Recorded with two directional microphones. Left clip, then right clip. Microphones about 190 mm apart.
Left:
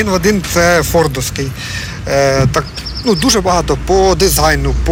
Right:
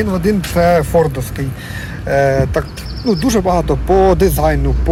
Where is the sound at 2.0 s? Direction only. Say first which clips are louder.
Left 1 dB; 15° right (ahead or behind).